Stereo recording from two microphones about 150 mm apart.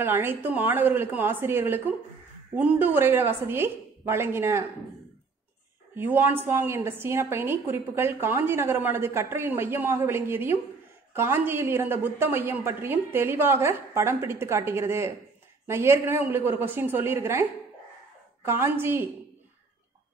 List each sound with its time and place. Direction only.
0.0 s a woman's voice: 15° right (ahead or behind)
5.9 s a woman's voice: 15° right (ahead or behind)